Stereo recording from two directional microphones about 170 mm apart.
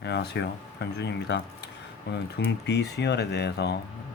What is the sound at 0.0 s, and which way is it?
Speech, 90° left.